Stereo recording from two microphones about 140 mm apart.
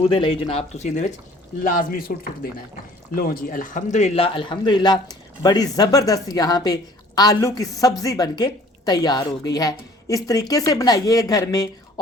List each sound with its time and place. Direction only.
0.3 s speech: 45° left (ahead or behind)
1.6 s a man's voice: 85° left; by 11.7 s 25° left (ahead or behind)